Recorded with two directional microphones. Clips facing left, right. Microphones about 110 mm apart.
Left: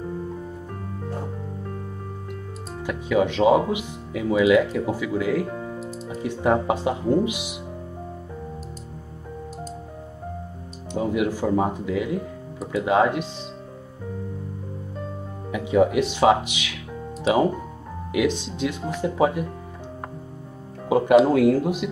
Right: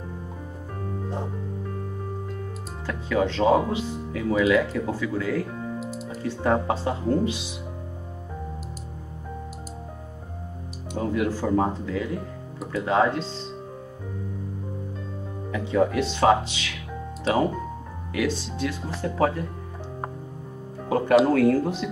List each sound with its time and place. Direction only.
2.9 s speech: 15° left (ahead or behind)
11.0 s speech: 15° left (ahead or behind)
15.5 s speech: 15° left (ahead or behind)
20.9 s speech: 15° left (ahead or behind)